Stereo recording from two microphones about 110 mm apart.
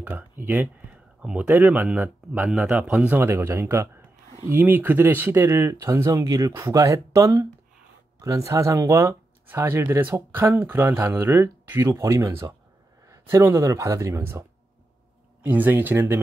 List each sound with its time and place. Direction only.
0.0 s speech: 15° right (ahead or behind)
11.9 s speech: 30° right (ahead or behind)
15.4 s speech: 15° right (ahead or behind)